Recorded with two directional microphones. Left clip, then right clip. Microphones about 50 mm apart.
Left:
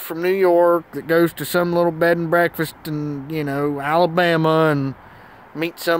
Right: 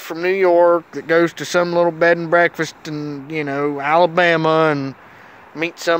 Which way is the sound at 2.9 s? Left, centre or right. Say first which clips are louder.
Even; left.